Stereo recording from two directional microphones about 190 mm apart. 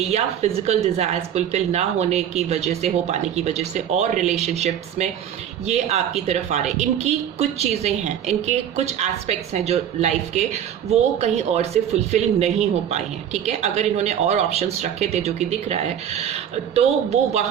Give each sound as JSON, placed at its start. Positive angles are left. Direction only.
{"t": 0.1, "sound": "speech", "side_deg": -35}